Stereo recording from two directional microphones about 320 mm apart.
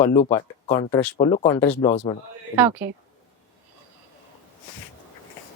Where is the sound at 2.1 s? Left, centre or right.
Centre.